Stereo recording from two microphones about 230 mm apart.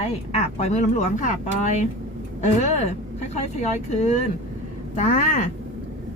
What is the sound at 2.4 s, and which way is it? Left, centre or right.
Speech, left.